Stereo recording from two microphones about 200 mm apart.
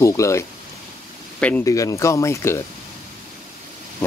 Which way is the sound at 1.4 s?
10° left (ahead or behind).